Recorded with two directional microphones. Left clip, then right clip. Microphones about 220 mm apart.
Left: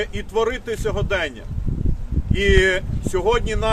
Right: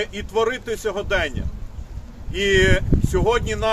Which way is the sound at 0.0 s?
Centre (ahead or behind).